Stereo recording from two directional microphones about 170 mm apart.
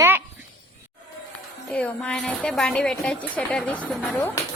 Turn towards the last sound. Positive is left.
turn(degrees=5)  # may be behind; listen again after turning